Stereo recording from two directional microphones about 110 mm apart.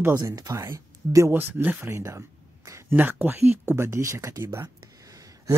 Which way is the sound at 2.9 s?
15° right (ahead or behind).